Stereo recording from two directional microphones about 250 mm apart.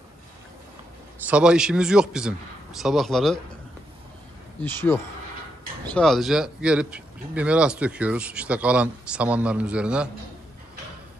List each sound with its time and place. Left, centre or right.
1.2 s a man's voice: centre
4.6 s a man's voice: centre